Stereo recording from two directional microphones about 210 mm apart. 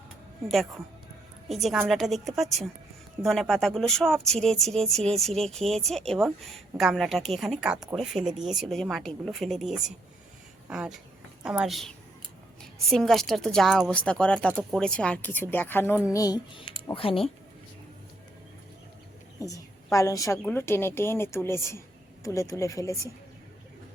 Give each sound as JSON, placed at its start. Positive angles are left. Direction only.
{"t": 0.4, "sound": "speech", "side_deg": 0}
{"t": 19.4, "sound": "a woman's voice", "side_deg": 15}